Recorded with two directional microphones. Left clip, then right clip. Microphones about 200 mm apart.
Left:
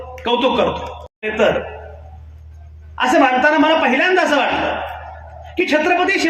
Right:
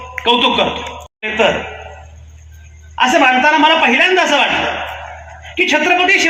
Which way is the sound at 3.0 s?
60° left (ahead or behind).